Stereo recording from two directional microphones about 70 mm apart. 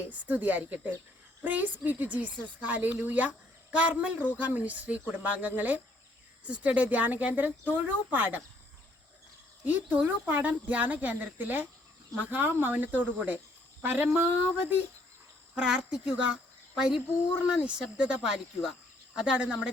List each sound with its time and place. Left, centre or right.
0.1 s a woman's voice: right
9.6 s a woman's voice: right
15.5 s speech: centre